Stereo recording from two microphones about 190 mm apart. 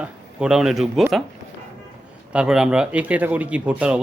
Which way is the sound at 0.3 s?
5° right (ahead or behind).